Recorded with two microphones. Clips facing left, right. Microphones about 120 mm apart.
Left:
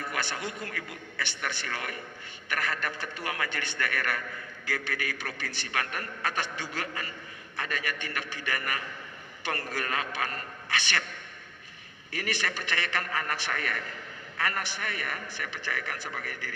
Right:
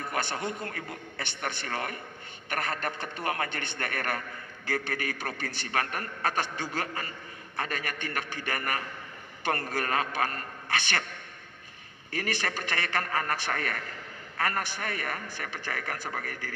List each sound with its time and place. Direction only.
0.2 s a sound: 35° right (ahead or behind)
0.6 s a man's voice: 30° right (ahead or behind)
2.5 s a man's voice: 45° right (ahead or behind)
3.2 s a man's voice: 35° right (ahead or behind)
12.1 s a man's voice: 40° right (ahead or behind)